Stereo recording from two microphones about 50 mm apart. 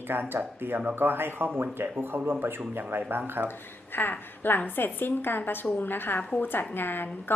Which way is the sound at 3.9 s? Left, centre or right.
Left.